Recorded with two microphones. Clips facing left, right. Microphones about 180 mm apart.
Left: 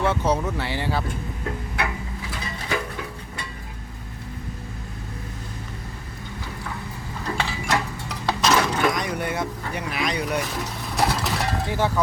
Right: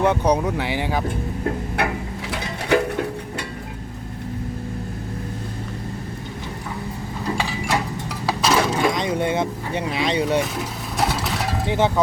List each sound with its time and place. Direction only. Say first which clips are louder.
0.0 s speech: right 4 dB; 15° right (ahead or behind)
2.3 s music: right 9 dB; 65° right (ahead or behind)
7.3 s clip-clop: even; 15° right (ahead or behind)
8.3 s coin: right 1 dB; 10° right (ahead or behind)
8.9 s vehicle: right 4 dB; 25° right (ahead or behind)
10.4 s a sound: right 2 dB; centre (ahead or behind)
11.7 s speech: right 5 dB; 20° right (ahead or behind)